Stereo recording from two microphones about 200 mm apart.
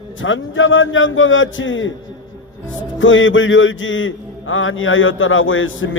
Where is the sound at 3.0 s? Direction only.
70° left (ahead or behind).